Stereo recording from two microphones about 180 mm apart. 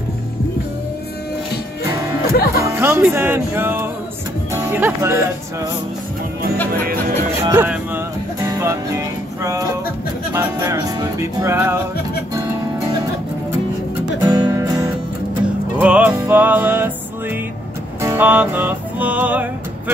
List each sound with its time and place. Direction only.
2.5 s music: 15° right (ahead or behind)
7.4 s music: 10° right (ahead or behind)
14.2 s music: 20° right (ahead or behind)
18.0 s music: 10° right (ahead or behind)